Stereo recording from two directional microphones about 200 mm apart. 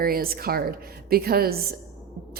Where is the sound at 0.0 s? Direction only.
50° right (ahead or behind).